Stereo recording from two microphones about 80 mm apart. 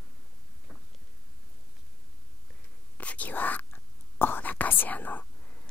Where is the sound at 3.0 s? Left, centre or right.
Centre.